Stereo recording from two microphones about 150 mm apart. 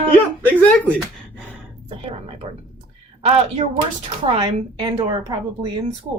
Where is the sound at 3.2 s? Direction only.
40° right (ahead or behind); by 5.9 s 25° right (ahead or behind).